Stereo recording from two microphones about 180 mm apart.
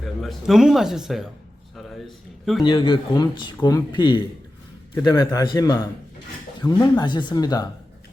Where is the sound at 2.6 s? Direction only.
25° left (ahead or behind).